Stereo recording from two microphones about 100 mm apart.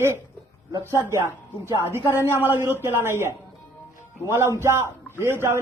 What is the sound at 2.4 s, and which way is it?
A man's voice, 25° right (ahead or behind).